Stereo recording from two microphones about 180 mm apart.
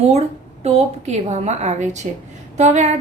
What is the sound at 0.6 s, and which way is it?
A woman's voice, 40° right (ahead or behind).